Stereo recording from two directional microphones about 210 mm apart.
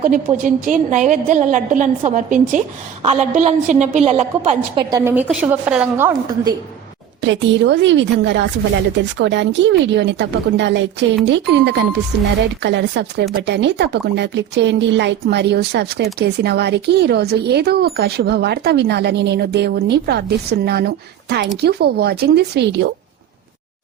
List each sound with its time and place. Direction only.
0.0 s a woman's voice: 35° right (ahead or behind); by 6.5 s 10° right (ahead or behind)
7.2 s speech: 60° right (ahead or behind)